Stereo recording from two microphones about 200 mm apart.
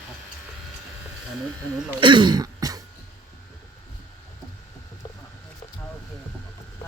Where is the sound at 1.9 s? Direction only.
25° right (ahead or behind).